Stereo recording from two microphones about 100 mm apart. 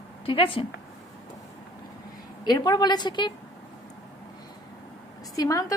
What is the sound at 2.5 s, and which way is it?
Speech, 40° left (ahead or behind).